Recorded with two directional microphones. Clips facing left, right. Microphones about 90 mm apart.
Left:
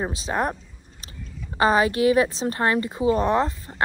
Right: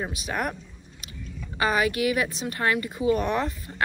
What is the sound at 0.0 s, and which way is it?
Speech, 30° left (ahead or behind).